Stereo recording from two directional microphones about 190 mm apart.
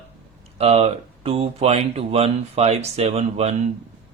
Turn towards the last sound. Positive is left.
turn(degrees=-35)  # may be behind; listen again after turning